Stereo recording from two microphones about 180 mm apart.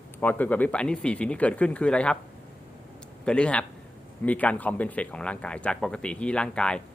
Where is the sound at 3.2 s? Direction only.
5° left (ahead or behind).